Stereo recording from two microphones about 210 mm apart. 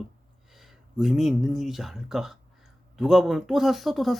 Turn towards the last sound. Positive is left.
turn(degrees=0)  # may be behind; listen again after turning